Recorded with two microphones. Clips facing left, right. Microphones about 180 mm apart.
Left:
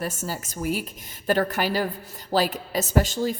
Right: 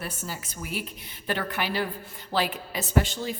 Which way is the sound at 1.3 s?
40° left (ahead or behind).